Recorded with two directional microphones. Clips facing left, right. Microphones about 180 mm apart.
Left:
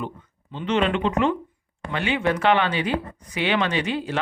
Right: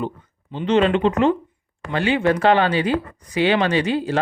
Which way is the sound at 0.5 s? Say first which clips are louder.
Right 5 dB; 30° right (ahead or behind).